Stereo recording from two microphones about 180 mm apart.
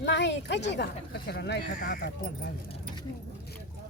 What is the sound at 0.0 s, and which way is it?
Speech, 75° left (ahead or behind).